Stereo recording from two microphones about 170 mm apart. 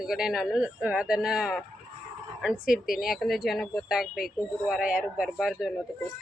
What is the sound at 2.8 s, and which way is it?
Speech, centre (ahead or behind).